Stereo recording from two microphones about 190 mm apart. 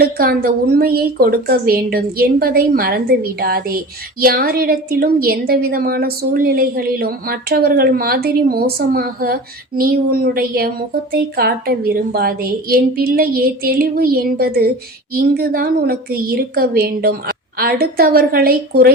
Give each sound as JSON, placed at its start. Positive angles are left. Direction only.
{"t": 0.0, "sound": "a woman's voice", "side_deg": -50}